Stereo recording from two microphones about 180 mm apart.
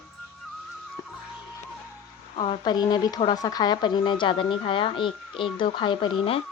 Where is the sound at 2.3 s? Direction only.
30° left (ahead or behind).